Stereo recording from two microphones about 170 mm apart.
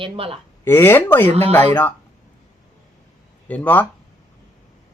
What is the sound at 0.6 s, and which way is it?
Speech, 15° left (ahead or behind).